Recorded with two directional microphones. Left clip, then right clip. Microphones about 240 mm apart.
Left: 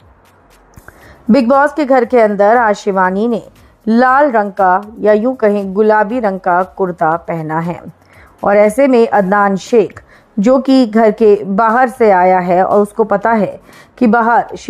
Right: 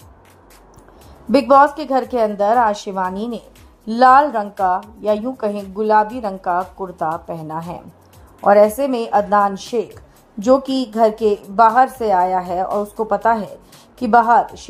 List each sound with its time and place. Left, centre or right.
1.3 s a woman's voice: left